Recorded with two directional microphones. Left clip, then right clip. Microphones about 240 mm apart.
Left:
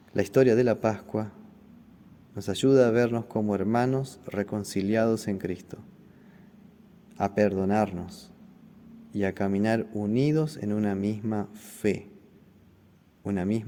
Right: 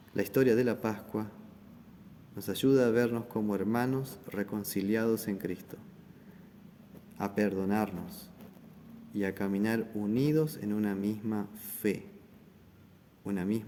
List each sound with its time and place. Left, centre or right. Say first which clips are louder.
0.1 s speech: left 5 dB; left
2.3 s speech: left 5 dB; left
7.2 s speech: left 7 dB; left
13.2 s speech: left 5 dB; left